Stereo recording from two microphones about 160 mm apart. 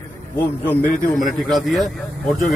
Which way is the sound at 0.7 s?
10° left (ahead or behind).